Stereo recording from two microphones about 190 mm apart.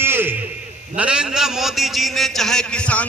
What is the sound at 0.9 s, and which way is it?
A man's voice, 5° right (ahead or behind).